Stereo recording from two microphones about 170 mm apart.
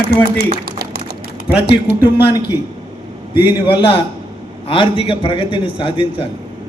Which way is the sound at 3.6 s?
30° left (ahead or behind).